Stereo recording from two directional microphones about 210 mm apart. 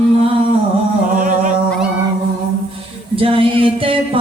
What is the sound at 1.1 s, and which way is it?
Humming, 40° right (ahead or behind).